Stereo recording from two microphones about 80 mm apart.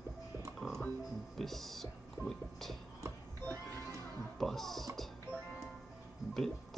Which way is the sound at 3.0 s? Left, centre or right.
Right.